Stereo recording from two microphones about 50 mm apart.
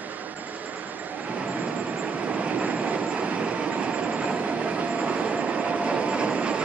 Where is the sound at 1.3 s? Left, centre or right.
Right.